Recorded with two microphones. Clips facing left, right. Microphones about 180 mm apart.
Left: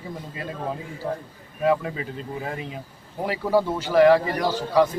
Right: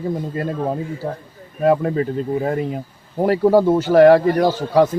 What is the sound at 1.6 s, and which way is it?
A man's voice, 45° right (ahead or behind).